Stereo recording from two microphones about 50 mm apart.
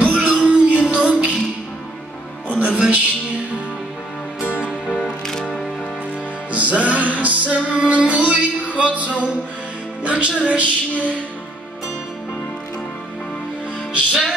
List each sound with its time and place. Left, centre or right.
0.0 s music: right
2.4 s music: right
2.7 s music: centre
4.4 s music: right
4.8 s music: centre
6.5 s music: right
10.4 s a sound: right